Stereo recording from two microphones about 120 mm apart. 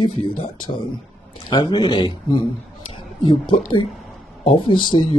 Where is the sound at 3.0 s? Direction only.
40° left (ahead or behind).